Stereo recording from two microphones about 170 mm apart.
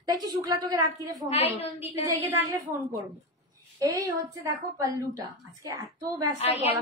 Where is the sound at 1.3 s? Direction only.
35° left (ahead or behind).